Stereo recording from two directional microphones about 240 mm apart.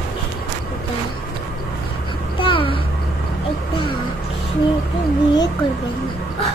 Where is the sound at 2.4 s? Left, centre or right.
Left.